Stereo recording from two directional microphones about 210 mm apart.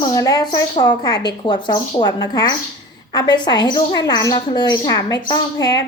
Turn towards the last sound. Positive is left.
turn(degrees=20)  # may be behind; listen again after turning